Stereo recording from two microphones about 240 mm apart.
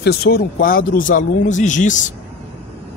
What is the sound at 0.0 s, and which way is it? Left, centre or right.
Speech, left.